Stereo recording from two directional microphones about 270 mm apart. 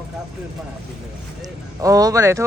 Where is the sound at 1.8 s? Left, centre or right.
Centre.